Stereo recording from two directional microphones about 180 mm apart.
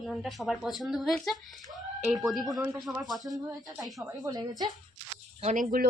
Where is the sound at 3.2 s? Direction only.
20° right (ahead or behind).